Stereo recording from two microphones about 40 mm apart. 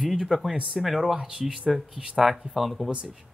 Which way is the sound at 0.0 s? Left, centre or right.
Centre.